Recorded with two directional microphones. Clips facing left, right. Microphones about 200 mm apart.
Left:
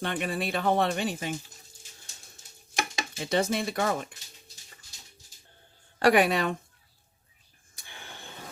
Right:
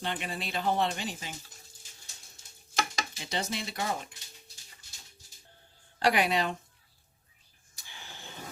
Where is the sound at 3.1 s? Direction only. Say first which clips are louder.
Left 10 dB; 55° left (ahead or behind).